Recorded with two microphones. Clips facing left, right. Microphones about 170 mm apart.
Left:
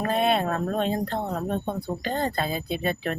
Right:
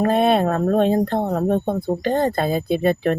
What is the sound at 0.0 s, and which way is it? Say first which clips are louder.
Speech: right 7 dB; 45° right (ahead or behind).